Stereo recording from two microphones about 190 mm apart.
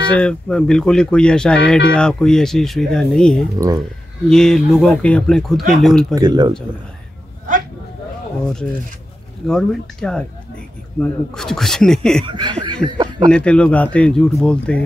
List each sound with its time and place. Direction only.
0.1 s speech: 5° left (ahead or behind)
3.5 s speech: 20° right (ahead or behind)
4.3 s speech: 5° left (ahead or behind)
6.1 s speech: 20° right (ahead or behind)
9.5 s speech: centre (ahead or behind)
12.3 s speech: 25° right (ahead or behind)
13.3 s speech: 5° left (ahead or behind)